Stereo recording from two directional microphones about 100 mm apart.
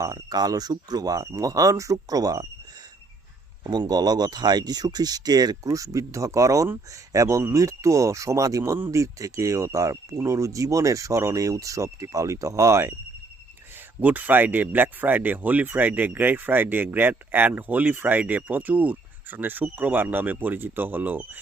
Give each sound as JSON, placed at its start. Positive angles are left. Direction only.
{"t": 0.0, "sound": "speech", "side_deg": -40}
{"t": 3.6, "sound": "speech", "side_deg": -45}
{"t": 14.0, "sound": "speech", "side_deg": -15}